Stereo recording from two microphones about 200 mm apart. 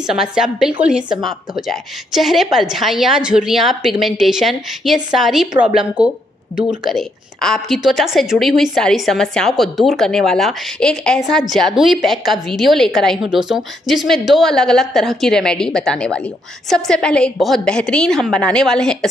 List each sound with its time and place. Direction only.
0.0 s a woman's voice: 5° right (ahead or behind)